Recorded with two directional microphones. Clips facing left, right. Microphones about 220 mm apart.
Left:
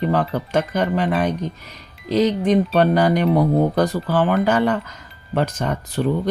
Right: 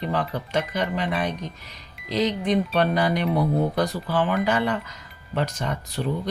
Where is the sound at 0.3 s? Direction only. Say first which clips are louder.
Left 5 dB; 45° left (ahead or behind).